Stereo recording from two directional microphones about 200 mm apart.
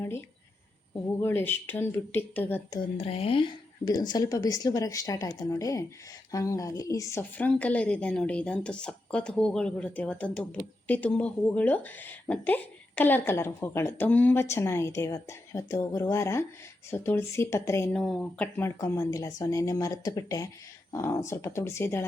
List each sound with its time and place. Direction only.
0.0 s speech: 10° left (ahead or behind)
3.0 s speech: 30° left (ahead or behind); by 22.0 s 15° left (ahead or behind)